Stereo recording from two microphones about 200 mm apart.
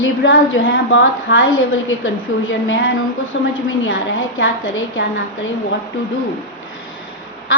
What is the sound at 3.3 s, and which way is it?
Speech, 65° left (ahead or behind).